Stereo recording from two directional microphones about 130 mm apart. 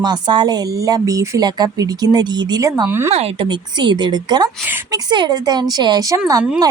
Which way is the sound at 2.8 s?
20° right (ahead or behind).